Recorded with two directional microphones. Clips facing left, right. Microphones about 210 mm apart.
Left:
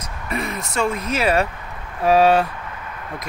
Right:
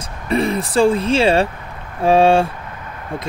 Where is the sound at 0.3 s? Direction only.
30° right (ahead or behind).